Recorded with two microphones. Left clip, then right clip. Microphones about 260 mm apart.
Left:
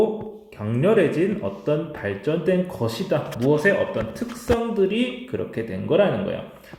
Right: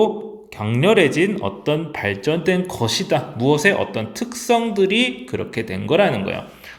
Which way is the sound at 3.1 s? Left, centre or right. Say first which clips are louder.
Right 1 dB; right.